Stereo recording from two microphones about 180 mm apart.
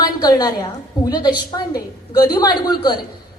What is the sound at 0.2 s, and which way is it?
A woman's voice, 20° left (ahead or behind).